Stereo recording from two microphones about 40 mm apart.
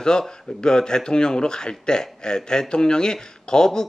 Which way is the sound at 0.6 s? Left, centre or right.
Centre.